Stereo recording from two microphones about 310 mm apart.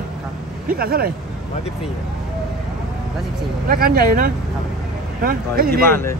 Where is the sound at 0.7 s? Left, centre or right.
Right.